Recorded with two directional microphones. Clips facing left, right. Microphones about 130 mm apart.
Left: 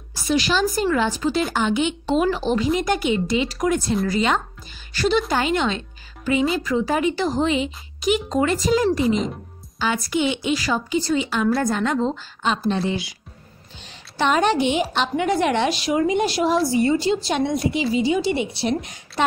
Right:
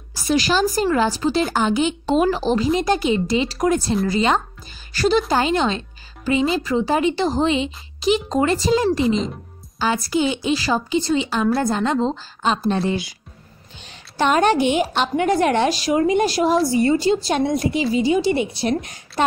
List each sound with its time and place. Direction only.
0.3 s a woman's voice: 40° right (ahead or behind)
12.6 s a woman's voice: 50° right (ahead or behind)
14.1 s a woman's voice: 45° right (ahead or behind)